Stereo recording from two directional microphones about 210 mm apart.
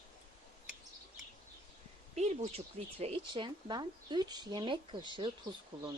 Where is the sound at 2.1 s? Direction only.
30° right (ahead or behind).